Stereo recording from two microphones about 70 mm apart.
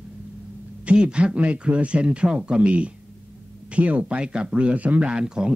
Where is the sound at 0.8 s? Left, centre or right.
Centre.